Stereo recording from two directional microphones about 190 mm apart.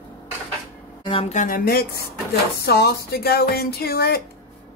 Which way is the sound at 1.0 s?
30° left (ahead or behind).